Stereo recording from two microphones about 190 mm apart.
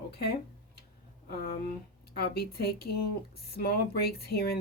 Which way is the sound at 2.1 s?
55° left (ahead or behind).